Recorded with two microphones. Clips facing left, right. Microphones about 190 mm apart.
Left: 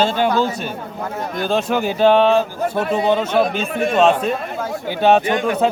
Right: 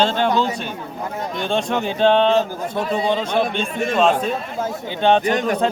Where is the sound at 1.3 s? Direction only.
5° left (ahead or behind).